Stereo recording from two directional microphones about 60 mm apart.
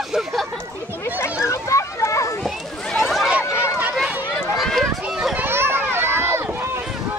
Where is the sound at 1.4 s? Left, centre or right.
Left.